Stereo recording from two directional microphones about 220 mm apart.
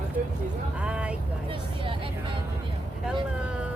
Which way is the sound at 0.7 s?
5° right (ahead or behind).